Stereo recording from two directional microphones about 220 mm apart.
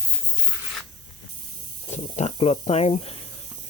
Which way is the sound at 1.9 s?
30° left (ahead or behind).